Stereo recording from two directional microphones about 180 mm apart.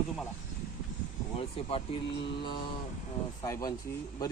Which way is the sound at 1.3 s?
35° left (ahead or behind).